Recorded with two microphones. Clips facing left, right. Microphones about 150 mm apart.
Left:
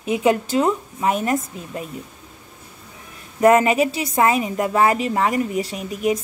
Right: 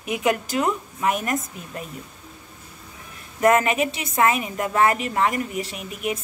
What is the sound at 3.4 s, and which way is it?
A woman's voice, 30° left (ahead or behind).